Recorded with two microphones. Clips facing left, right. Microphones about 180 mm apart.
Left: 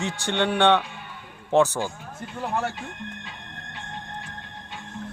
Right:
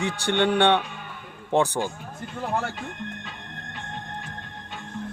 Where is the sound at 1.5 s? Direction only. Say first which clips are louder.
Left 2 dB; 15° right (ahead or behind).